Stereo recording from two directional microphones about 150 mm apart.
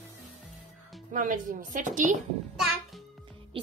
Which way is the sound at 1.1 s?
60° right (ahead or behind).